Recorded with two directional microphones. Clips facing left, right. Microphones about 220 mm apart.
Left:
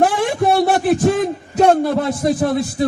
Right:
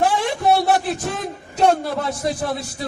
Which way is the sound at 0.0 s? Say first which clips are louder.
Left 4 dB; 50° left (ahead or behind).